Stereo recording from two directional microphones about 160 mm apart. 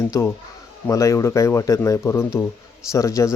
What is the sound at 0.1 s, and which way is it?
A man's voice, 15° left (ahead or behind).